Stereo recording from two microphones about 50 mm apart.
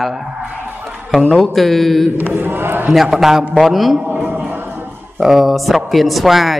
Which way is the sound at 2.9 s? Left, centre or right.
Centre.